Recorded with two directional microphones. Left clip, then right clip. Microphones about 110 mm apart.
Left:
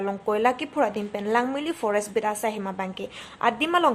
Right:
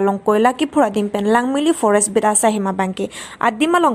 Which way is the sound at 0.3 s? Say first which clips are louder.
Right 6 dB; 40° right (ahead or behind).